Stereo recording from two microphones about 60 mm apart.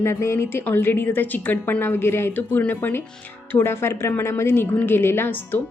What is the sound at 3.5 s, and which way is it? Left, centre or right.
A woman's voice, left.